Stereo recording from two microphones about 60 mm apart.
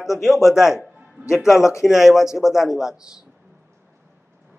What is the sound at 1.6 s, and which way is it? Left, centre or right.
Speech, left.